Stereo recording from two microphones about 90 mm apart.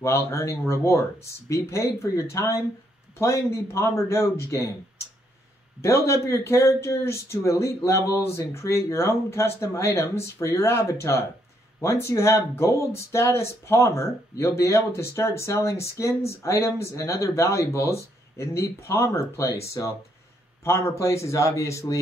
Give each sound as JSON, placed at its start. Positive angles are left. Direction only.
{"t": 0.0, "sound": "speech", "side_deg": 30}